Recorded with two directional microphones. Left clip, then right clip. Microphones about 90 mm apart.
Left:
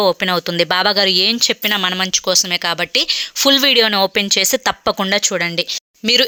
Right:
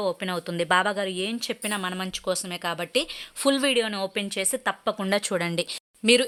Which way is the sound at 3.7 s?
45° left (ahead or behind).